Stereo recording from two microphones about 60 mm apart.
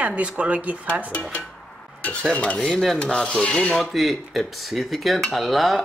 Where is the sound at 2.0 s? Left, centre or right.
Left.